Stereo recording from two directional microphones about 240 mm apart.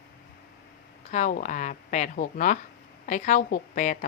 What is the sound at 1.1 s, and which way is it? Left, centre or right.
A woman's voice, left.